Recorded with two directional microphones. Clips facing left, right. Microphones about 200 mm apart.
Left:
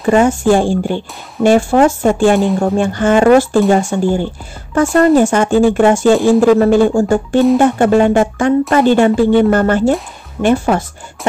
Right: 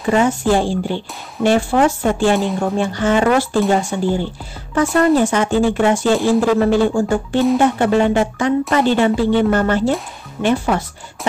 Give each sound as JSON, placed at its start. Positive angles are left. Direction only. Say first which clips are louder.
{"t": 0.0, "sound": "speech", "louder": "left 5 dB", "side_deg": 50}